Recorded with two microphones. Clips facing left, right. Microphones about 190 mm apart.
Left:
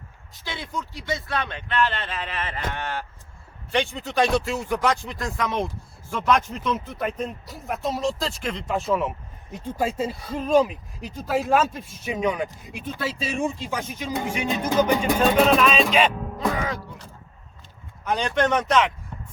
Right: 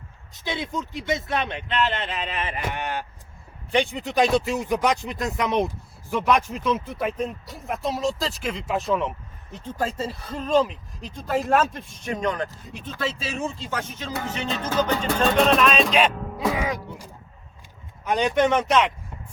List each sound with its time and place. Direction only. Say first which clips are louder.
0.3 s speech: right 4 dB; 20° right (ahead or behind)
6.2 s speech: even; 5° right (ahead or behind)